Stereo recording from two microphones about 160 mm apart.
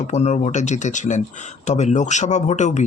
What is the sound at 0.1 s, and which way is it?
Speech, 45° left (ahead or behind).